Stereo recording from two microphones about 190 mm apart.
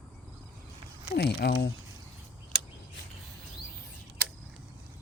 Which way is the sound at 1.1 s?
55° left (ahead or behind).